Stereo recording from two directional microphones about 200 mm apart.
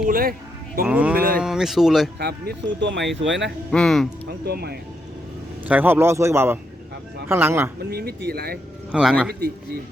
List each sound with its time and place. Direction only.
0.1 s speech: 45° right (ahead or behind)
0.9 s speech: 5° right (ahead or behind)
2.1 s speech: 55° right (ahead or behind)
3.7 s speech: centre (ahead or behind)
4.3 s speech: 50° right (ahead or behind)
5.6 s a man's voice: 10° right (ahead or behind)
7.8 s speech: 50° right (ahead or behind)
8.9 s speech: 5° right (ahead or behind)